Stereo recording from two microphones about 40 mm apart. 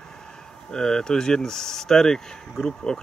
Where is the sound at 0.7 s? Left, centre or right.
Centre.